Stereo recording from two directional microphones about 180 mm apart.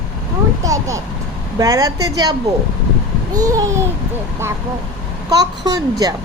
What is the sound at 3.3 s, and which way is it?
Speech, 20° right (ahead or behind).